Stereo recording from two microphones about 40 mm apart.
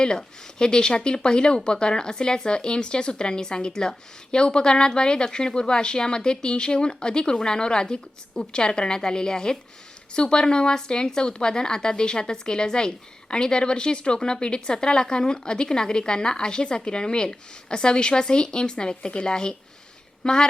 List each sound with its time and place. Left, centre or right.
0.0 s speech: centre